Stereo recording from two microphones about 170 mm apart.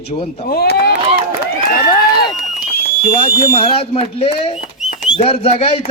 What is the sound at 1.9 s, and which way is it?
Run, 25° left (ahead or behind).